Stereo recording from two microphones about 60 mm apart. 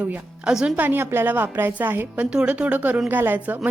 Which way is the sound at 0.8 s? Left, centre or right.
Right.